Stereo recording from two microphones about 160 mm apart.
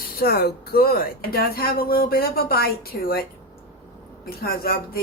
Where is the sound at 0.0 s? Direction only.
75° left (ahead or behind).